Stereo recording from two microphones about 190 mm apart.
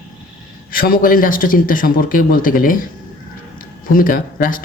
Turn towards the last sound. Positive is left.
turn(degrees=45)  # may be behind; listen again after turning